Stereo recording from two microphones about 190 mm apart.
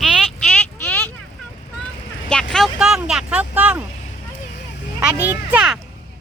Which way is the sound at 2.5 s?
Centre (ahead or behind).